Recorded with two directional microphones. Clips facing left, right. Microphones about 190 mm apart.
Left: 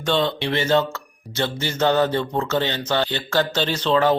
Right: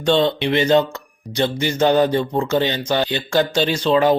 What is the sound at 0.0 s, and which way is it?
Speech, 20° right (ahead or behind).